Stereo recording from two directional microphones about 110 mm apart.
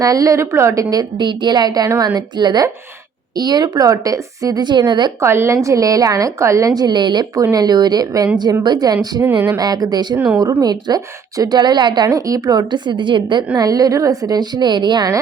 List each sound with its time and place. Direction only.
0.0 s a woman's voice: 30° right (ahead or behind)
5.2 s a woman's voice: 25° right (ahead or behind); by 9.0 s 40° right (ahead or behind)
9.2 s speech: 15° right (ahead or behind)
9.6 s a woman's voice: 35° right (ahead or behind)
10.2 s speech: 15° right (ahead or behind)
10.6 s a woman's voice: 35° right (ahead or behind)
13.6 s a woman's voice: 35° right (ahead or behind)